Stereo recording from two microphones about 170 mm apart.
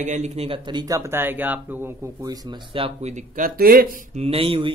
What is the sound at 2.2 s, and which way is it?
Speech, 25° right (ahead or behind).